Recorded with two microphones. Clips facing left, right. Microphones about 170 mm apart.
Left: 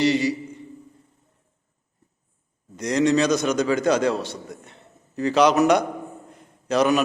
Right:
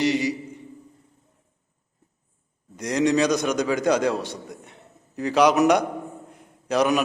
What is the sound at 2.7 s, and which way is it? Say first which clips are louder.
A man's voice: left 1 dB; 10° right (ahead or behind).